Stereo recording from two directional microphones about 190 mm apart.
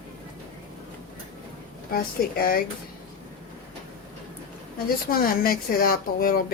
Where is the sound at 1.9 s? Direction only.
50° left (ahead or behind).